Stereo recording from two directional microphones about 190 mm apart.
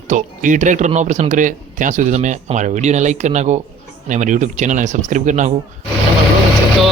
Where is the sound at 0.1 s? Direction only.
40° right (ahead or behind).